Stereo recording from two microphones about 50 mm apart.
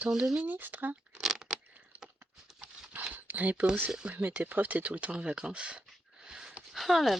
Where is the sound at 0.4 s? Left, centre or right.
Right.